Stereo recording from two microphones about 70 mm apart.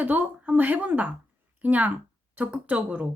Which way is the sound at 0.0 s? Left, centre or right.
Right.